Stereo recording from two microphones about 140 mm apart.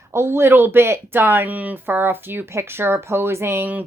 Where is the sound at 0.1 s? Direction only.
15° right (ahead or behind).